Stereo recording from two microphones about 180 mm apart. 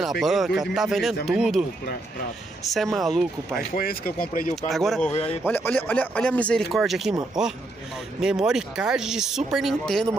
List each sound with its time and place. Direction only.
0.0 s speech: centre (ahead or behind)
2.7 s speech: centre (ahead or behind)
3.7 s speech: 55° left (ahead or behind)
4.6 s speech: centre (ahead or behind)